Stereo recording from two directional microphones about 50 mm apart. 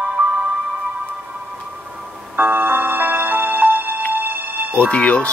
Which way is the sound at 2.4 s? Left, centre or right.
Right.